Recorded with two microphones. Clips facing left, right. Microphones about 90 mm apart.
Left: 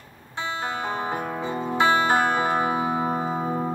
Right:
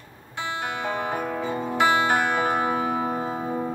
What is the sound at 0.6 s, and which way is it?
Music, 30° left (ahead or behind).